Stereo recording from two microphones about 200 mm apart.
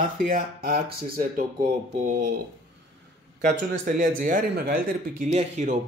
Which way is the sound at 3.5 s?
40° right (ahead or behind).